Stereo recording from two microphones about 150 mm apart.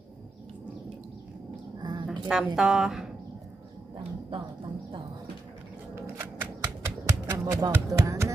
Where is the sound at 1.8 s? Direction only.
30° right (ahead or behind).